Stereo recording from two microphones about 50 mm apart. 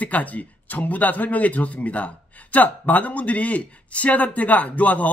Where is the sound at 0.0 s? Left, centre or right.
Left.